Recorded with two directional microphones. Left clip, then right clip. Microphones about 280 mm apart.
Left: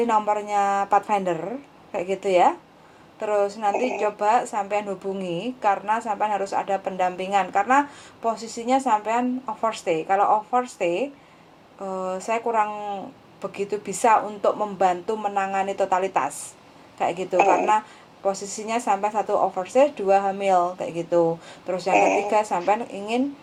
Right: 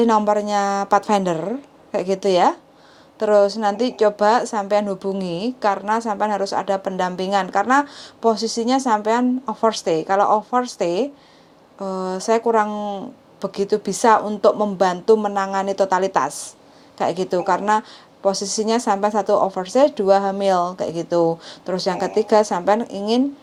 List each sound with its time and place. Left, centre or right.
0.0 s a woman's voice: right
8.4 s a woman's voice: right
8.7 s a woman's voice: right